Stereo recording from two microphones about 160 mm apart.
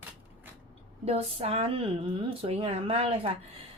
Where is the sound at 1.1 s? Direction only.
40° right (ahead or behind).